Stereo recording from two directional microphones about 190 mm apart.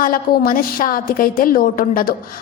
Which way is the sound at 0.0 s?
50° left (ahead or behind).